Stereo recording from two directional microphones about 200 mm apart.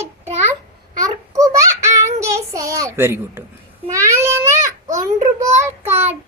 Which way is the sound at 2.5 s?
15° right (ahead or behind).